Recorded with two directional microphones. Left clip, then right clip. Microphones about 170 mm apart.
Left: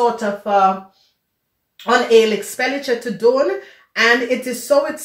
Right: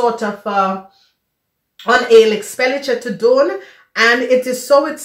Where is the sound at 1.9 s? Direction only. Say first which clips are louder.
Right 3 dB; 35° right (ahead or behind).